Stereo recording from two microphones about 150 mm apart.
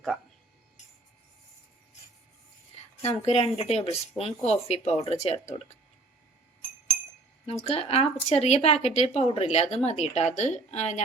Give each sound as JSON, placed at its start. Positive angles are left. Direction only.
{"t": 3.1, "sound": "speech", "side_deg": 45}
{"t": 7.4, "sound": "speech", "side_deg": 40}